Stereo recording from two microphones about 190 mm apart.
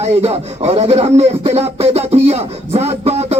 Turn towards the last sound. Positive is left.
turn(degrees=-35)  # may be behind; listen again after turning